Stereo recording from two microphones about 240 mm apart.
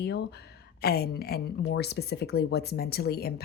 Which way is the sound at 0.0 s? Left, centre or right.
Left.